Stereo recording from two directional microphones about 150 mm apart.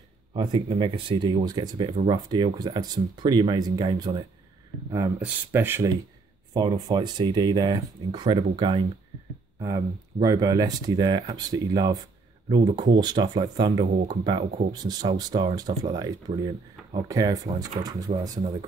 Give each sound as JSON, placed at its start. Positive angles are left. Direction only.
{"t": 0.3, "sound": "speech", "side_deg": -35}
{"t": 6.5, "sound": "speech", "side_deg": -30}